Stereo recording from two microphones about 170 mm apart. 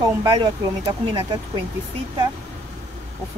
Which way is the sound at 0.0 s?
25° right (ahead or behind).